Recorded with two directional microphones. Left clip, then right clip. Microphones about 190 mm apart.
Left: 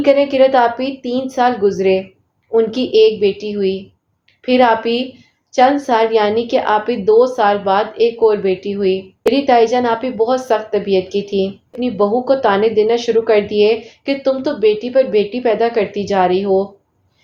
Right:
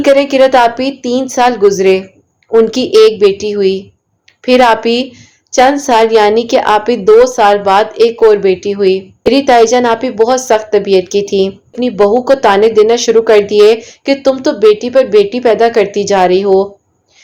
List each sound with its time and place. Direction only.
0.0 s a woman's voice: 50° right (ahead or behind)